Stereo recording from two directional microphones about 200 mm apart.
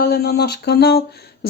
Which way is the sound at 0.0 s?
50° left (ahead or behind).